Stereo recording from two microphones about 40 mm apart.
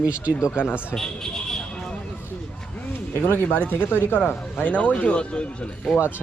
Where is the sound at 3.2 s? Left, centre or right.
Left.